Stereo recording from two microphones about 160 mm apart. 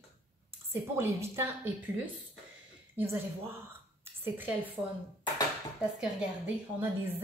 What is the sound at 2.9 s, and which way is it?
A woman's voice, 15° right (ahead or behind).